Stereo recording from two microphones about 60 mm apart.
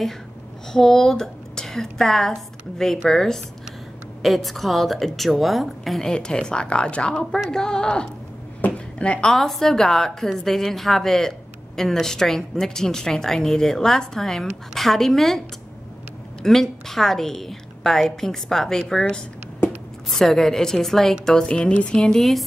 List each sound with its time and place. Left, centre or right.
0.7 s a woman's voice: centre
7.3 s a woman's voice: centre
7.6 s a woman's voice: centre
8.5 s a sound: left
9.3 s a woman's voice: centre
16.4 s a woman's voice: centre
20.1 s a woman's voice: centre
21.5 s a woman's voice: centre